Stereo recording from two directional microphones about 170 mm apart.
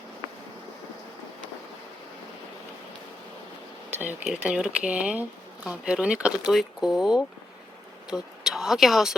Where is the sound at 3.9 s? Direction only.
10° right (ahead or behind).